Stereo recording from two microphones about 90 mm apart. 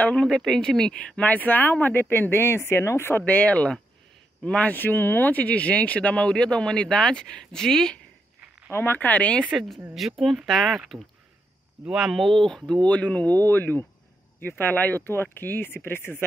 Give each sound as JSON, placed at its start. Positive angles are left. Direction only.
{"t": 0.0, "sound": "speech", "side_deg": 10}
{"t": 8.6, "sound": "speech", "side_deg": 25}
{"t": 9.9, "sound": "speech", "side_deg": 0}